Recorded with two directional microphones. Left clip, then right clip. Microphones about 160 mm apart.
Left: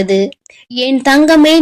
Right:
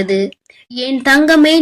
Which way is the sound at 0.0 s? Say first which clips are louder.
Left 3 dB; 25° left (ahead or behind).